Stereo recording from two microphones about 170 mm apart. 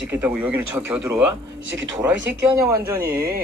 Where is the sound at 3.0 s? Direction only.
65° right (ahead or behind).